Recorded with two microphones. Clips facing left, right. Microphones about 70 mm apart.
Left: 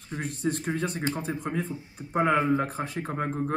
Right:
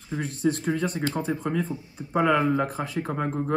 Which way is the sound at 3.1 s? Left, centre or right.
Right.